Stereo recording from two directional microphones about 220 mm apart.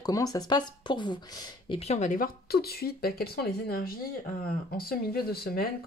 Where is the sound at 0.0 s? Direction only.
15° left (ahead or behind).